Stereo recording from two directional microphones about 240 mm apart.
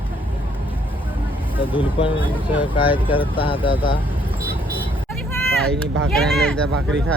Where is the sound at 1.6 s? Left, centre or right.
Left.